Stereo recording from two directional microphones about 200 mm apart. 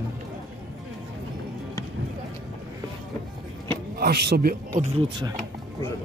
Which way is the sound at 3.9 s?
55° right (ahead or behind).